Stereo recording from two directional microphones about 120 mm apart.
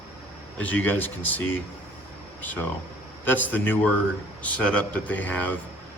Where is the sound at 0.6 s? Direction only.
15° left (ahead or behind).